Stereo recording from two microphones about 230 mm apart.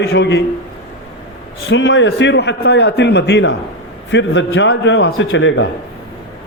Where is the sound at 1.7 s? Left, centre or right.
Left.